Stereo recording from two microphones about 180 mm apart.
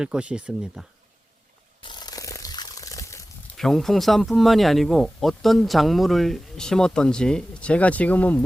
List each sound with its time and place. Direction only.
0.0 s speech: 5° right (ahead or behind)
1.8 s a sound: 25° left (ahead or behind)
3.6 s speech: centre (ahead or behind)